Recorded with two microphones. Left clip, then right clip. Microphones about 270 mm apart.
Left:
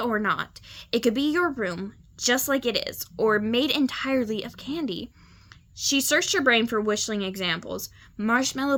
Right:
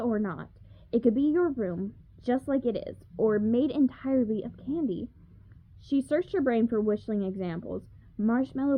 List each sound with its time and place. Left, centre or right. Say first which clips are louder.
0.0 s speech: left 7 dB; centre
1.5 s a woman's voice: left 3 dB; centre
2.1 s speech: left 5 dB; centre
7.6 s speech: left 4 dB; centre